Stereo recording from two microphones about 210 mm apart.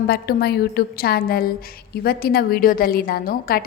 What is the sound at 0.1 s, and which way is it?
A woman's voice, 50° left (ahead or behind).